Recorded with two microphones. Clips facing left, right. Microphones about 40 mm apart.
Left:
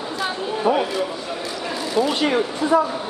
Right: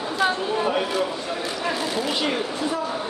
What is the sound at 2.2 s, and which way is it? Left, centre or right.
Speech, left.